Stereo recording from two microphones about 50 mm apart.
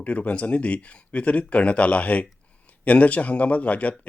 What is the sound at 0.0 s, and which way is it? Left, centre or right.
Speech, left.